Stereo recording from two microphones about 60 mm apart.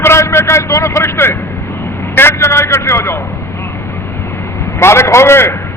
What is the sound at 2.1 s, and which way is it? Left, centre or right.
A man's voice, left.